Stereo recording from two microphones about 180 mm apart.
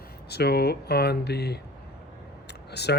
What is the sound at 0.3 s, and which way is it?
Speech, 65° left (ahead or behind).